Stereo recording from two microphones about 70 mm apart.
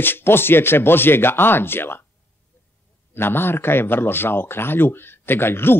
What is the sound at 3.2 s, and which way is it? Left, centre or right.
Speech, left.